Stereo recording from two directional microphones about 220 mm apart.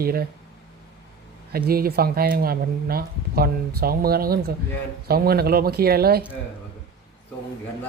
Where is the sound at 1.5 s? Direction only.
45° right (ahead or behind).